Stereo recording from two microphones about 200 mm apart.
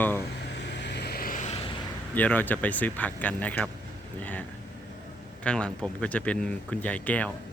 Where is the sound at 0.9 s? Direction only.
55° left (ahead or behind).